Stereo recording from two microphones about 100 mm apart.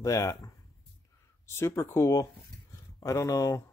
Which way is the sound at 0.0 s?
30° left (ahead or behind).